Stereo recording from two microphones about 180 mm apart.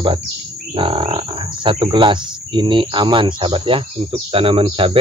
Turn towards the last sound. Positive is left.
turn(degrees=-30)  # may be behind; listen again after turning